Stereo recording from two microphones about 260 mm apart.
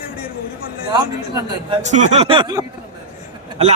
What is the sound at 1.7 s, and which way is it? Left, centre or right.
A man's voice, right.